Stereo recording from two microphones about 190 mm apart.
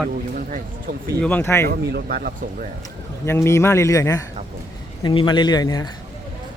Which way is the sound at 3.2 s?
15° left (ahead or behind).